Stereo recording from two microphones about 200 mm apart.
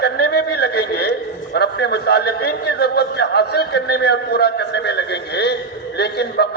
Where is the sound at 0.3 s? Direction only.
55° left (ahead or behind).